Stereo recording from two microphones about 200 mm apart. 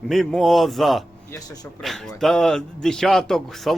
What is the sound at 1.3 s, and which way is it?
Speech, 20° left (ahead or behind).